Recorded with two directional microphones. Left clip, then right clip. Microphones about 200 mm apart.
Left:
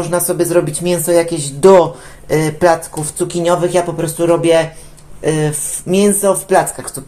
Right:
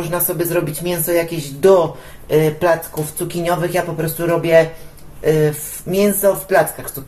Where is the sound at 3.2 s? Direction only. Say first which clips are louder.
Left 6 dB; 35° left (ahead or behind).